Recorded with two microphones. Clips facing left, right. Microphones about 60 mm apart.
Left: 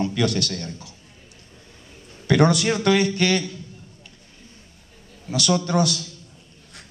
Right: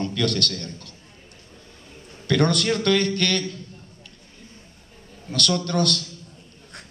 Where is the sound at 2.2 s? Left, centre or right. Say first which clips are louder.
Left 3 dB; centre.